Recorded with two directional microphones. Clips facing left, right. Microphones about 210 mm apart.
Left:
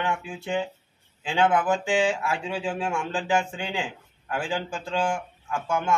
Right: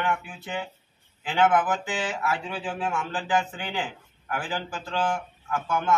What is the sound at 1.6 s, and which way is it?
Speech, 25° left (ahead or behind).